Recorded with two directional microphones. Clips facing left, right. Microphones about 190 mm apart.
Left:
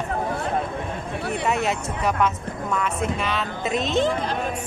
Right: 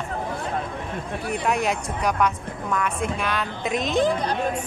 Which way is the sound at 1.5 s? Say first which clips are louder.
Right 1 dB; centre (ahead or behind).